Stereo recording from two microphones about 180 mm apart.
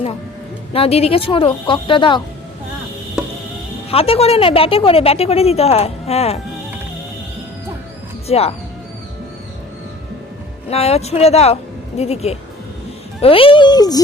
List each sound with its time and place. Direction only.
0.7 s speech: 35° left (ahead or behind)
3.8 s a woman's voice: 35° left (ahead or behind)
8.3 s a woman's voice: 35° left (ahead or behind)
10.7 s a woman's voice: 35° left (ahead or behind)